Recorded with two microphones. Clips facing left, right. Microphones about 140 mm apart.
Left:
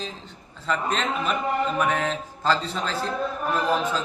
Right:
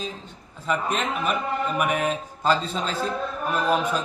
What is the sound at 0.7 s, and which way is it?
A man's voice, 10° right (ahead or behind).